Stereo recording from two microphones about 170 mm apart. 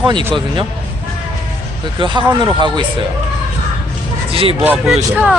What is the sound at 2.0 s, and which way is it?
Speech, 25° right (ahead or behind).